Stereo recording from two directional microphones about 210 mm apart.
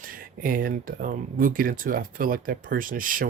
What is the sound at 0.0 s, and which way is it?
Speech, 40° right (ahead or behind).